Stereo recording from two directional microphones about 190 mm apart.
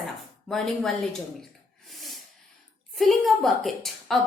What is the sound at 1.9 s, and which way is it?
Snort, centre (ahead or behind).